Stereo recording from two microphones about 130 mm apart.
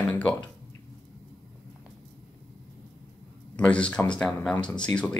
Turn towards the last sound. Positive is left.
turn(degrees=5)  # may be behind; listen again after turning